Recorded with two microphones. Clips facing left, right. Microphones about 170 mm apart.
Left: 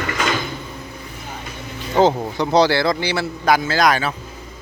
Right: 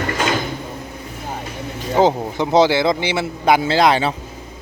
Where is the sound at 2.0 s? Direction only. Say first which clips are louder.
Even; 15° right (ahead or behind).